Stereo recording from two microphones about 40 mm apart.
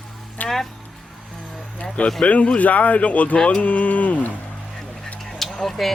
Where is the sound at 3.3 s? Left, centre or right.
Left.